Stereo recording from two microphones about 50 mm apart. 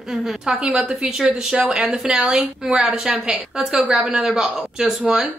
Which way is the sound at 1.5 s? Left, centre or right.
Right.